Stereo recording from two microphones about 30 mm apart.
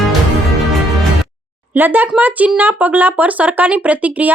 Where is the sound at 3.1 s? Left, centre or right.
Right.